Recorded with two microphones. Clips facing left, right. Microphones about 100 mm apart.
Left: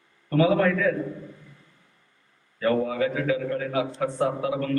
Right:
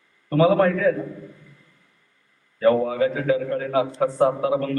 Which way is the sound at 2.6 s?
35° right (ahead or behind).